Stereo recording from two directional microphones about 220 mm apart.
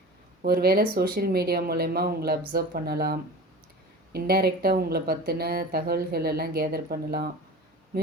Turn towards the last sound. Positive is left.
turn(degrees=-45)  # may be behind; listen again after turning